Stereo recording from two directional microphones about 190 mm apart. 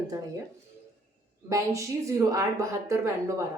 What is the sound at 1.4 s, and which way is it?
A woman's voice, 15° right (ahead or behind).